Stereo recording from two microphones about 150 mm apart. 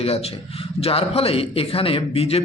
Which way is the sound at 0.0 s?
40° left (ahead or behind).